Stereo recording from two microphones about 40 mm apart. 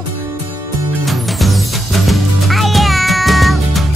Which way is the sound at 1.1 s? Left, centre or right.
Centre.